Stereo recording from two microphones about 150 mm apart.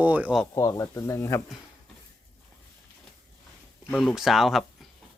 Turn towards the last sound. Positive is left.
turn(degrees=0)  # may be behind; listen again after turning